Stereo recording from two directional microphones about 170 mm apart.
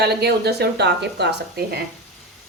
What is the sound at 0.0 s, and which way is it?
Speech, 70° right (ahead or behind).